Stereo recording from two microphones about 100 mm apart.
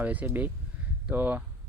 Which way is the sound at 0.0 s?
15° right (ahead or behind).